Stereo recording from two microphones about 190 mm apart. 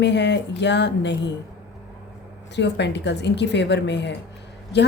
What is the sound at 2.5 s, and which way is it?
A woman's voice, 65° left (ahead or behind).